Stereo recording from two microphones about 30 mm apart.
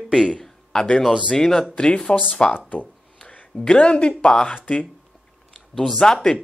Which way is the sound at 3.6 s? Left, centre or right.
Left.